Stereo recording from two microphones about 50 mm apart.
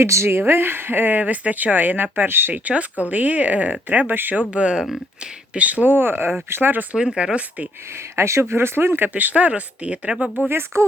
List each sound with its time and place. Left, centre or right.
0.0 s speech: right
0.3 s speech: right
2.5 s speech: right
4.4 s speech: right
4.7 s speech: centre
5.2 s speech: right
6.9 s speech: centre
7.9 s speech: right
9.0 s speech: right
10.5 s speech: right